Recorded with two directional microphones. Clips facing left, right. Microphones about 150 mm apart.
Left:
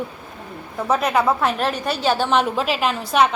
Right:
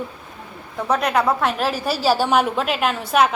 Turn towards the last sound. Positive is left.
turn(degrees=0)  # may be behind; listen again after turning